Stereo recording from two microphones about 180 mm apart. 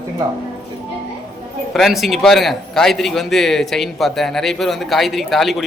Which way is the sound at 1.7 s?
Centre (ahead or behind).